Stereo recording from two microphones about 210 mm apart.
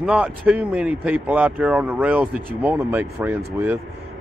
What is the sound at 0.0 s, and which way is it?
Speech, 5° right (ahead or behind).